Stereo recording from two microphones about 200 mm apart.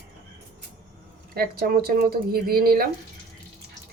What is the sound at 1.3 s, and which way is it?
Speech, 50° right (ahead or behind).